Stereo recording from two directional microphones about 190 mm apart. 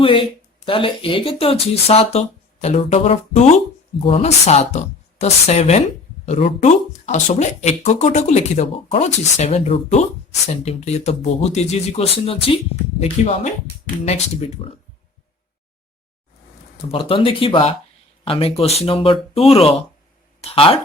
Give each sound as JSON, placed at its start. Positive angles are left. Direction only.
{"t": 0.0, "sound": "speech", "side_deg": 25}
{"t": 14.6, "sound": "speech", "side_deg": 30}
{"t": 16.9, "sound": "speech", "side_deg": 30}